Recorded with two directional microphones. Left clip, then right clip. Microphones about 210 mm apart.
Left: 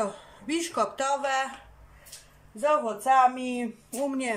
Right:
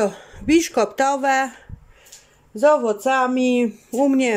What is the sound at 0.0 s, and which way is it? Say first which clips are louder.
Speech: right 9 dB; 40° right (ahead or behind).